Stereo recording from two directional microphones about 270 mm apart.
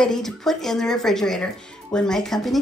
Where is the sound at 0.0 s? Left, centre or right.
Centre.